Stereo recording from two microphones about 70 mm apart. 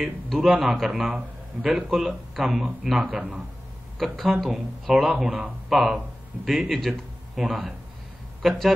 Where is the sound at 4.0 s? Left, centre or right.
Centre.